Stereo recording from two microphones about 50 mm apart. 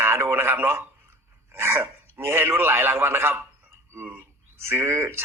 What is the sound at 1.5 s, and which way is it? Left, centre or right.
A man's voice, right.